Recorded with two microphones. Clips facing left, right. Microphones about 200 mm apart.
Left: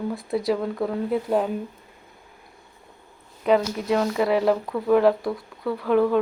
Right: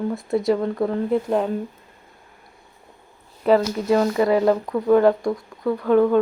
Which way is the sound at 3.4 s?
Centre (ahead or behind).